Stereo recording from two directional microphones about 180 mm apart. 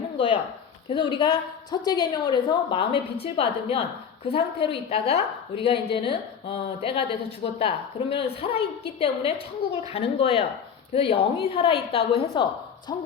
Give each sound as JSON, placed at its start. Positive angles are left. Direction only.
{"t": 0.9, "sound": "a woman's voice", "side_deg": 30}